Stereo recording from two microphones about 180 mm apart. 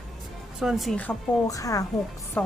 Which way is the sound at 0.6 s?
Centre (ahead or behind).